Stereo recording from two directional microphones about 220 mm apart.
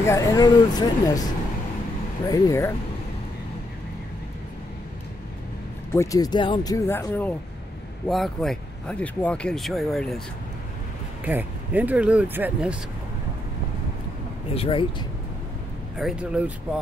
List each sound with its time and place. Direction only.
0.0 s speech: 15° left (ahead or behind)
2.2 s speech: 15° left (ahead or behind)
5.9 s speech: 15° left (ahead or behind)
11.2 s speech: 10° right (ahead or behind)
14.5 s speech: 25° left (ahead or behind)
16.0 s speech: 5° right (ahead or behind)